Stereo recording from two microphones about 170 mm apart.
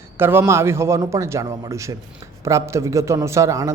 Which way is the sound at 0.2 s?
15° right (ahead or behind).